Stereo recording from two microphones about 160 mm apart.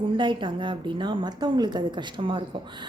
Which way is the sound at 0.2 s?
30° right (ahead or behind).